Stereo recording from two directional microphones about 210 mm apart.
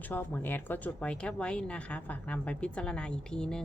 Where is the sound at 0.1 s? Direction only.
10° left (ahead or behind).